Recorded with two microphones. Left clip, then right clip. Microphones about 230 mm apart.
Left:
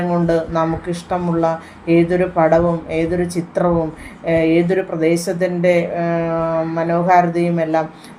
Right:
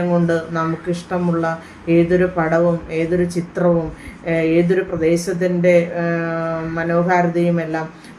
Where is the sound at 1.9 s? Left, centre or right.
Centre.